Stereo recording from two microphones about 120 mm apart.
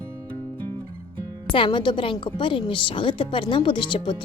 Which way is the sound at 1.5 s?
45° left (ahead or behind).